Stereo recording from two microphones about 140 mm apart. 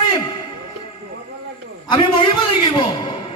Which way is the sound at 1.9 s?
35° left (ahead or behind).